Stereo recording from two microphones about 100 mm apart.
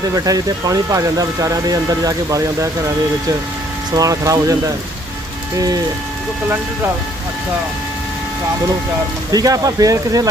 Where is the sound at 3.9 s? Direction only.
35° right (ahead or behind).